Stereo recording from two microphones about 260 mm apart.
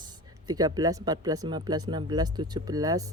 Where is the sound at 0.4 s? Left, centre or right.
Centre.